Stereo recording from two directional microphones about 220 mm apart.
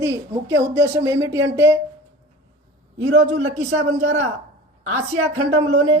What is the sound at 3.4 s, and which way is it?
Speech, 30° right (ahead or behind).